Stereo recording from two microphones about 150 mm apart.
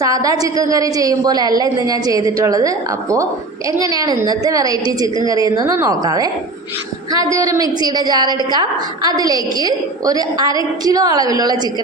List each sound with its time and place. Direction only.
0.0 s a woman's voice: 25° right (ahead or behind)